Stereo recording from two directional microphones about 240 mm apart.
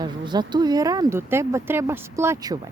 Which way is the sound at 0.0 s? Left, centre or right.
Centre.